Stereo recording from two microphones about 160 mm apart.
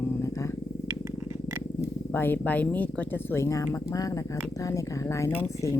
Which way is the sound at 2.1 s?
10° left (ahead or behind).